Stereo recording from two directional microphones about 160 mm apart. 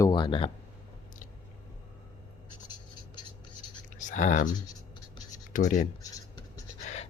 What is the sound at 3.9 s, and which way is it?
Writing, 50° left (ahead or behind).